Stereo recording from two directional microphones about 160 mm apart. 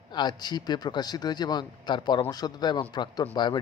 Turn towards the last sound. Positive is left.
turn(degrees=30)  # may be behind; listen again after turning